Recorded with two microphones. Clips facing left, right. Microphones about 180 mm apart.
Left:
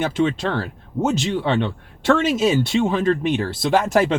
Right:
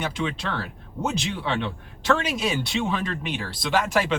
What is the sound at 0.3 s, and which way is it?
Speech, 50° left (ahead or behind).